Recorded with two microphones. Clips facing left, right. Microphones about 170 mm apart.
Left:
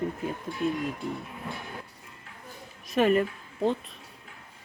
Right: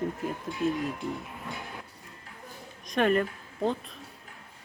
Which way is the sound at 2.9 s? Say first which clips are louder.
Left 2 dB; 5° left (ahead or behind).